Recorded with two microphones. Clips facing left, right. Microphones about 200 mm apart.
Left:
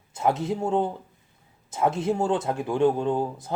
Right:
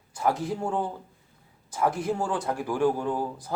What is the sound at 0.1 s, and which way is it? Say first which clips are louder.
Speech: left 2 dB; 25° left (ahead or behind).